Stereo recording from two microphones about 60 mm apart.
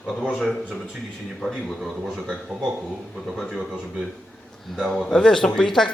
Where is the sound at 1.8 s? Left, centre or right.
Centre.